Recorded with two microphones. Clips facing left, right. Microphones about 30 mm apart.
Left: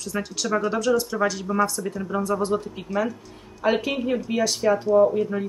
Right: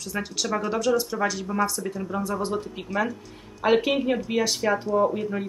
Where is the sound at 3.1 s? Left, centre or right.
Centre.